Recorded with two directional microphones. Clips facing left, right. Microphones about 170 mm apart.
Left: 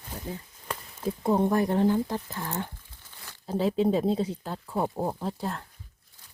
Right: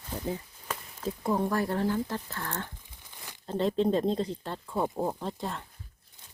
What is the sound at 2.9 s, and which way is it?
Crumpling, 15° right (ahead or behind).